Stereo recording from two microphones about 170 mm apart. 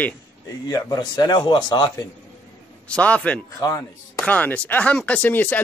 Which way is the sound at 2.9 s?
5° left (ahead or behind).